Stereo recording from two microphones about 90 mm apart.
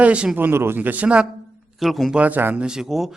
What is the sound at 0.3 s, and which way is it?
Speech, 25° right (ahead or behind).